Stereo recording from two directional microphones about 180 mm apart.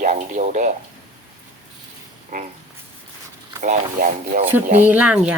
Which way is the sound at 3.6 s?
45° right (ahead or behind).